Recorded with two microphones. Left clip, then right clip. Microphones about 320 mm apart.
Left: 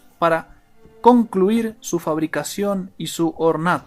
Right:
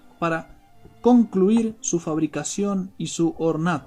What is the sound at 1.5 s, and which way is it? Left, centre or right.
Speech, left.